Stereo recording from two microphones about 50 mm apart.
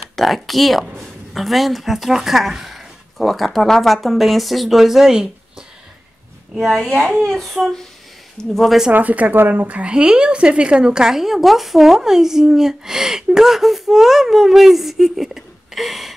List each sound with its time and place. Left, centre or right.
0.1 s a woman's voice: centre
7.2 s speech: centre
8.9 s speech: right
9.7 s a woman's voice: right; by 16.1 s centre